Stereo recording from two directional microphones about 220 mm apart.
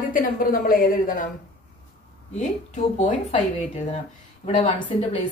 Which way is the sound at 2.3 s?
35° left (ahead or behind).